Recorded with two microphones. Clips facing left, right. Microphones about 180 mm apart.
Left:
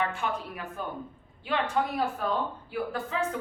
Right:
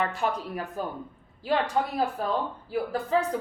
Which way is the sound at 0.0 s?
40° right (ahead or behind).